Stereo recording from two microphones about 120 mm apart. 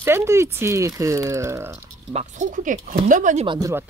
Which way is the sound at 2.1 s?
90° right.